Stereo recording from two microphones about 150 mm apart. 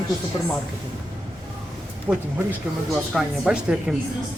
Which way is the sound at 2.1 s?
10° right (ahead or behind).